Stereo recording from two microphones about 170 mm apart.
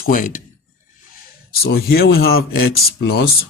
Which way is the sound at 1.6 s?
70° left (ahead or behind).